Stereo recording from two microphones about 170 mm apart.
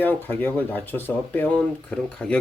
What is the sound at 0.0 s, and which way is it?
Speech, 10° left (ahead or behind).